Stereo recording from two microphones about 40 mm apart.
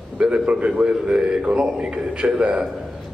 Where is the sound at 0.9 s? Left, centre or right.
Centre.